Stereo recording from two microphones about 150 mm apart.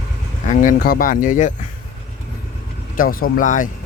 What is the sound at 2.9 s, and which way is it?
Speech, 70° left (ahead or behind).